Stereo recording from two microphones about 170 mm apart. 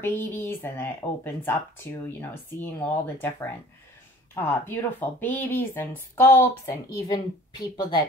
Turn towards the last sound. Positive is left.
turn(degrees=25)  # may be behind; listen again after turning